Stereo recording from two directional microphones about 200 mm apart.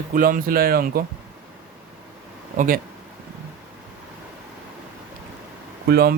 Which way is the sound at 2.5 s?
45° right (ahead or behind).